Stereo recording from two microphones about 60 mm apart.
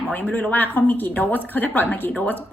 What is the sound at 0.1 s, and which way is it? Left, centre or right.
A woman's voice, left.